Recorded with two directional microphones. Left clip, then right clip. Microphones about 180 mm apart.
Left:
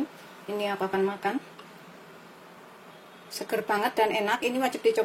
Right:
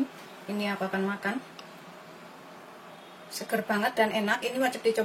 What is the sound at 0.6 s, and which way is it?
Speech, 35° left (ahead or behind).